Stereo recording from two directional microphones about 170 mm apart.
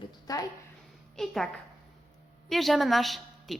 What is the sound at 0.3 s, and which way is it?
Speech, 20° left (ahead or behind).